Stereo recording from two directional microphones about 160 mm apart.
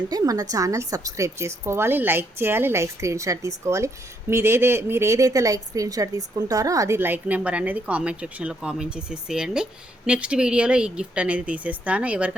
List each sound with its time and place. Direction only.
0.1 s a woman's voice: 25° right (ahead or behind)